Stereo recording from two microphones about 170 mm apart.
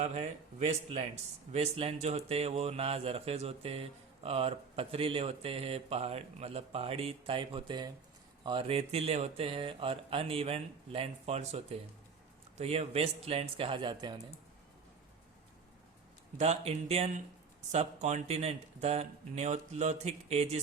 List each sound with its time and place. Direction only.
0.0 s speech: 40° right (ahead or behind)
16.4 s speech: 40° right (ahead or behind)